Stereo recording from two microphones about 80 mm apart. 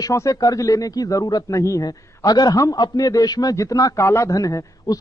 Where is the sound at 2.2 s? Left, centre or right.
Left.